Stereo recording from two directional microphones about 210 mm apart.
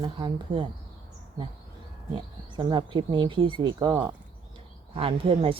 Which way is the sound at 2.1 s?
25° right (ahead or behind).